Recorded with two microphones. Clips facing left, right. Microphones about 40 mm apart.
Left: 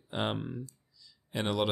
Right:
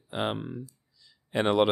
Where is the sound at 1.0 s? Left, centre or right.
Right.